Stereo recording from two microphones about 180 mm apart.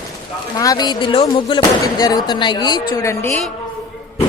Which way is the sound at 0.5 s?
20° left (ahead or behind).